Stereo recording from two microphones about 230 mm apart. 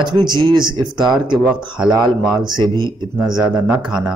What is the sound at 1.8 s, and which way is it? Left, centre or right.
Speech, centre.